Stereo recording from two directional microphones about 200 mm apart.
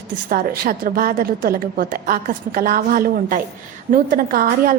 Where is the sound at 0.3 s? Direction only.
45° right (ahead or behind).